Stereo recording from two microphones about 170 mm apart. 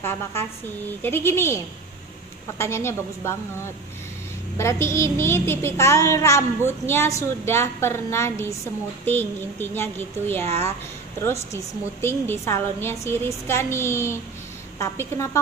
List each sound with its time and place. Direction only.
0.0 s a child's voice: 15° left (ahead or behind)
2.6 s a child's voice: 15° left (ahead or behind)